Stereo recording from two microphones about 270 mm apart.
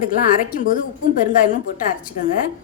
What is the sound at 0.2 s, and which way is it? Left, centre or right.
A woman's voice, left.